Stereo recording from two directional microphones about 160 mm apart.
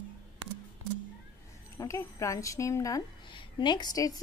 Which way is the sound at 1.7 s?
20° left (ahead or behind).